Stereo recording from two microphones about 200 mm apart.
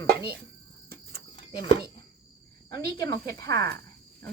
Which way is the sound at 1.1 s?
25° left (ahead or behind).